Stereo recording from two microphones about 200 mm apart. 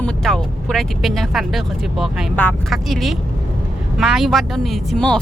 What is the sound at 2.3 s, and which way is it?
Speech, 10° left (ahead or behind).